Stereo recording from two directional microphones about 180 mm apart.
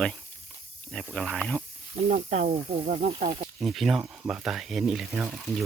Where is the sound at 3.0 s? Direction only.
55° right (ahead or behind).